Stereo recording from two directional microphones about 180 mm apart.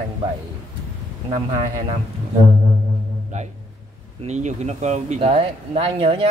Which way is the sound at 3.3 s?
40° right (ahead or behind).